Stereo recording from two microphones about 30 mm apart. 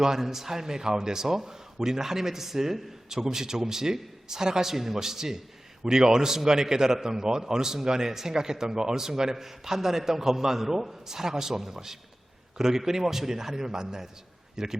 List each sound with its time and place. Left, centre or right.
0.0 s a man's voice: centre